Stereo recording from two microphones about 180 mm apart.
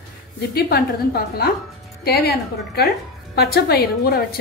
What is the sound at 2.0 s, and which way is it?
Speech, 60° left (ahead or behind).